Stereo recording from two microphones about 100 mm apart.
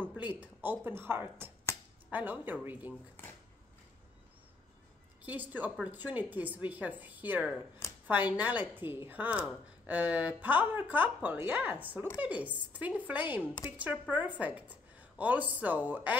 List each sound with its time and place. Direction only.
0.0 s a woman's voice: 15° right (ahead or behind)
5.2 s a woman's voice: 15° right (ahead or behind)